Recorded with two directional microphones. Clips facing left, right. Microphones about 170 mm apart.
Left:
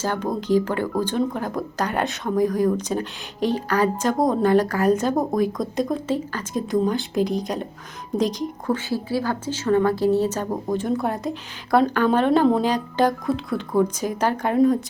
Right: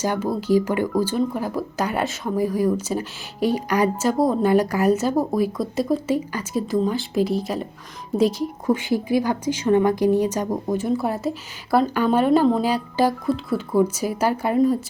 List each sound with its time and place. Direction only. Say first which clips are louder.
0.0 s a woman's voice: right 2 dB; 10° right (ahead or behind)